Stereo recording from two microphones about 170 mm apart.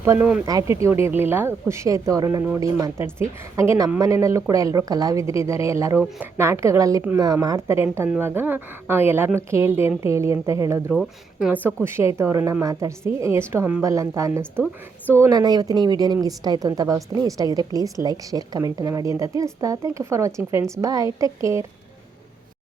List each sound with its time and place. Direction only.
0.0 s a woman's voice: 15° right (ahead or behind)
10.9 s a woman's voice: centre (ahead or behind); by 21.7 s 15° right (ahead or behind)